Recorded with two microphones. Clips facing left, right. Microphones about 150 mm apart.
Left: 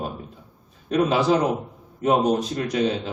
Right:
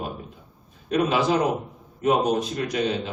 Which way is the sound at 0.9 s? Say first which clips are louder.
Left 2 dB; 35° left (ahead or behind).